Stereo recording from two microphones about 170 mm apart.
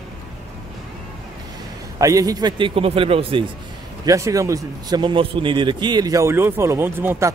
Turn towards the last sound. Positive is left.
turn(degrees=-15)  # may be behind; listen again after turning